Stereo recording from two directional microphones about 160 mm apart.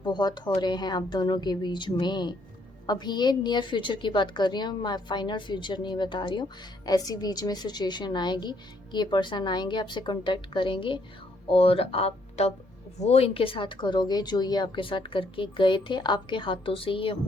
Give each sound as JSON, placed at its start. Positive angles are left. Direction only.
{"t": 0.0, "sound": "a woman's voice", "side_deg": 25}